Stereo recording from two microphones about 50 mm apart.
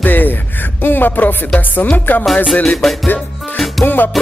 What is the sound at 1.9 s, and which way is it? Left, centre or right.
Speech, left.